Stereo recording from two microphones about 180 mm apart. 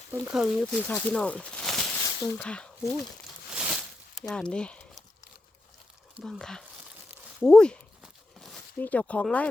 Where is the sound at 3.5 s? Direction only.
5° right (ahead or behind).